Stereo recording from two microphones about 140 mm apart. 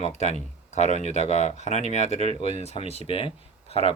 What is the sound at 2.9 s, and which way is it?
Speech, 40° left (ahead or behind).